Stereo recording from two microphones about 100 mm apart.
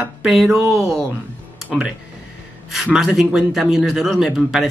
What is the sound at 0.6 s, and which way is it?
Speech, 25° right (ahead or behind).